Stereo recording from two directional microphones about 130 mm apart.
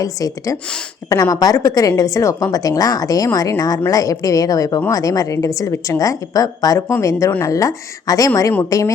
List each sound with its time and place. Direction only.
0.0 s a woman's voice: 25° left (ahead or behind)